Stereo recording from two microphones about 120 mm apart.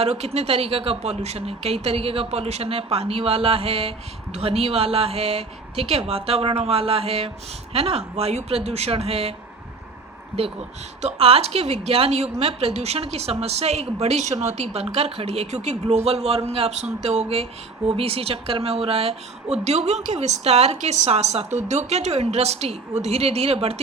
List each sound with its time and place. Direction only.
0.0 s speech: 60° right (ahead or behind)
11.0 s speech: 55° right (ahead or behind)